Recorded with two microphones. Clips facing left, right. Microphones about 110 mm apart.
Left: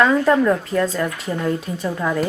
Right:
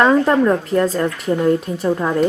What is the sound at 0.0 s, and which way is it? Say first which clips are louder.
Speech: right 2 dB; 25° right (ahead or behind).